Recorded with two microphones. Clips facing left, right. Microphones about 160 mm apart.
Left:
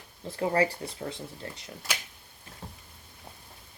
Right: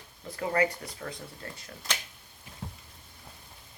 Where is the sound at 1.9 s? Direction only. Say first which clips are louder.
Even; 5° left (ahead or behind).